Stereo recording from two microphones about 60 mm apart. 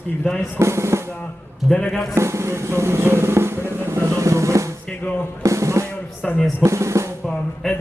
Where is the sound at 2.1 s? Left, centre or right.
Right.